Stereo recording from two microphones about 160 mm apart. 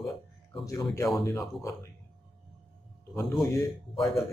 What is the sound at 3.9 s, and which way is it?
Speech, centre (ahead or behind).